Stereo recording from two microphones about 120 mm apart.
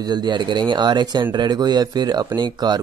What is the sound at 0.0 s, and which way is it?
Speech, 35° right (ahead or behind).